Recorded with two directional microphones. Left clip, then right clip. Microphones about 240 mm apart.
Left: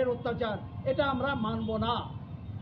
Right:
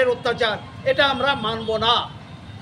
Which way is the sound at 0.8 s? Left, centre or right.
Centre.